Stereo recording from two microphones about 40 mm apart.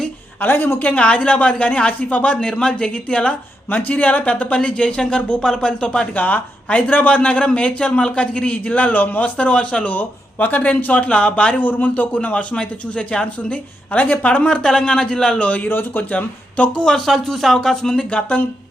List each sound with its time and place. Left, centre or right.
0.3 s a woman's voice: left
0.9 s a man's voice: left
6.1 s a man's voice: left
11.6 s a man's voice: left
13.9 s a man's voice: left; by 15.4 s centre
15.4 s a man's voice: left
15.7 s a woman's voice: left
16.1 s a man's voice: left
16.8 s speech: centre
17.9 s a man's voice: left